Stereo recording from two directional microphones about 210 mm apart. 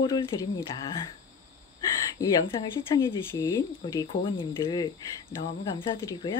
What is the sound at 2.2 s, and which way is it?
Speech, 15° left (ahead or behind).